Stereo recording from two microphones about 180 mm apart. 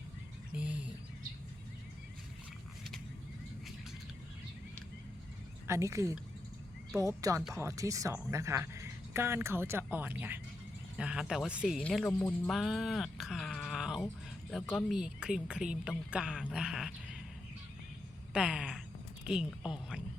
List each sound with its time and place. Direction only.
0.6 s a sound: 5° right (ahead or behind)
5.6 s a woman's voice: 15° right (ahead or behind)
11.8 s a woman's voice: 5° left (ahead or behind)
18.3 s a woman's voice: 5° right (ahead or behind)